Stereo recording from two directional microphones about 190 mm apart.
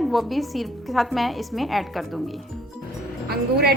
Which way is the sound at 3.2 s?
55° right (ahead or behind).